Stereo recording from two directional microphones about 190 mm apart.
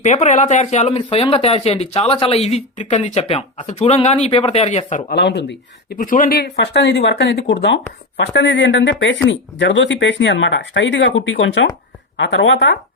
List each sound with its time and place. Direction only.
0.0 s speech: 40° left (ahead or behind)
5.1 s speech: 65° left (ahead or behind)
6.0 s speech: 45° left (ahead or behind); by 12.8 s 70° left (ahead or behind)